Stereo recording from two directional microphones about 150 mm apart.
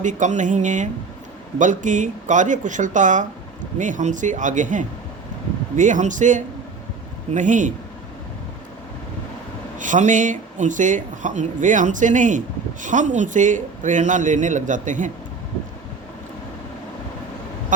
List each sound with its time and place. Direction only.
0.0 s speech: 55° right (ahead or behind)
9.7 s speech: 55° right (ahead or behind)